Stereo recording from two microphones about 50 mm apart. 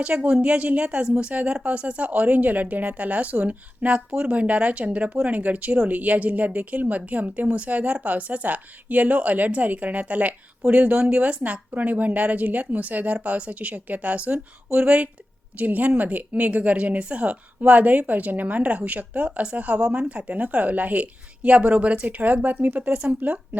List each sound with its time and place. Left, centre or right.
0.0 s a woman's voice: right